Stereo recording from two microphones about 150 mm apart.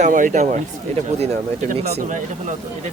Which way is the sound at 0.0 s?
60° right (ahead or behind).